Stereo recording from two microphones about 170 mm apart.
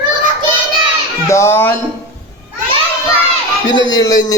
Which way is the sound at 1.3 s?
15° left (ahead or behind).